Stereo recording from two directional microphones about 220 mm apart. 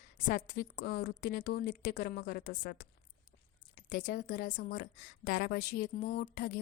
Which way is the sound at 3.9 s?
45° left (ahead or behind).